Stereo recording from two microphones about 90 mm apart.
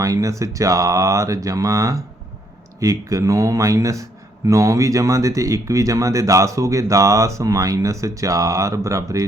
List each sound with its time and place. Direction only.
0.0 s speech: 40° right (ahead or behind)